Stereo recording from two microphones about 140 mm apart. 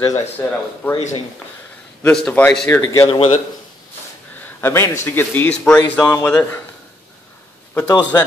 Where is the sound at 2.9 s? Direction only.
30° left (ahead or behind).